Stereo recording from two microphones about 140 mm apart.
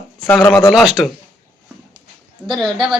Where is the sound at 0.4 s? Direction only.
20° left (ahead or behind).